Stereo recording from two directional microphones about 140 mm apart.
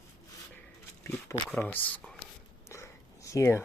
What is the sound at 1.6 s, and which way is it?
Speech, 10° left (ahead or behind).